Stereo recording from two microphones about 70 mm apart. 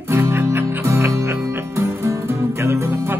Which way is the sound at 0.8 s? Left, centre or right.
Right.